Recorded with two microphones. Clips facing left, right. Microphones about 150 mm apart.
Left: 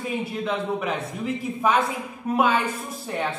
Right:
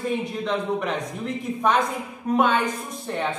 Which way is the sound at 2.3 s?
5° left (ahead or behind).